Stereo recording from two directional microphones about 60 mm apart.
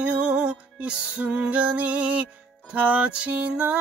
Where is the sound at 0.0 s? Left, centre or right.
Centre.